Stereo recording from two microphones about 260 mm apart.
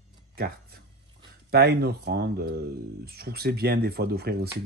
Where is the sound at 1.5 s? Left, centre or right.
Right.